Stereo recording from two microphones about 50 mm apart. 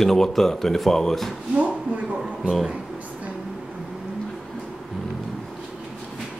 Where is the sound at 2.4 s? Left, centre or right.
Centre.